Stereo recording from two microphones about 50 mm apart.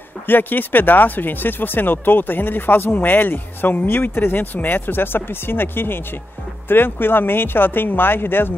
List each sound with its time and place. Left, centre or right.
0.3 s speech: left